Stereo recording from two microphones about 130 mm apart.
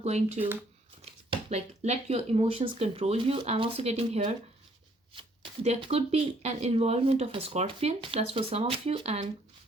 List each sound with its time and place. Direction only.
0.0 s speech: 55° right (ahead or behind)
5.6 s speech: 50° right (ahead or behind)